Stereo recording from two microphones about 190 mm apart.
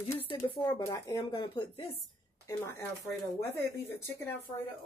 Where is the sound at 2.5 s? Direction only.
15° left (ahead or behind).